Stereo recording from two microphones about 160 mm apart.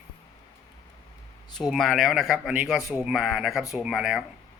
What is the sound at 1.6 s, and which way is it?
Speech, centre (ahead or behind).